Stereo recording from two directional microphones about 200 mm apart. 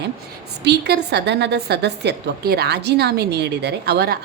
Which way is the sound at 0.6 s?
55° right (ahead or behind).